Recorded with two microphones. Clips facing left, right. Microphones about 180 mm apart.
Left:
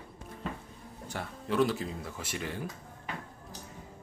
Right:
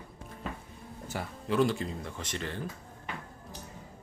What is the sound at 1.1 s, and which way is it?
Speech, centre (ahead or behind).